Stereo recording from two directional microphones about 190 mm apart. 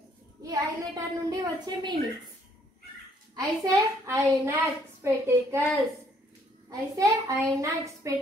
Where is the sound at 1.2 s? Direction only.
20° right (ahead or behind).